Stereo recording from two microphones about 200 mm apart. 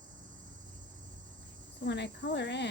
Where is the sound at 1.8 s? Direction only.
60° left (ahead or behind).